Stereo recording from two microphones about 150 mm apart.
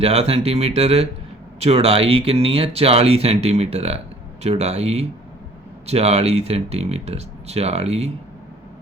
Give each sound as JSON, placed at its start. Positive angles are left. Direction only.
{"t": 0.0, "sound": "speech", "side_deg": -40}